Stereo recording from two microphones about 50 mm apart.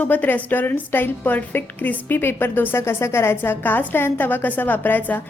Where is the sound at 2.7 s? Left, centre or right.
Left.